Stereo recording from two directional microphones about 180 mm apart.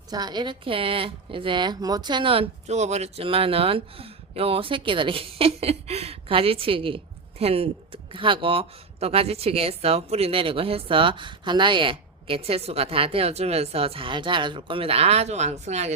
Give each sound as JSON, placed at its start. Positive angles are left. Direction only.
{"t": 0.1, "sound": "speech", "side_deg": -25}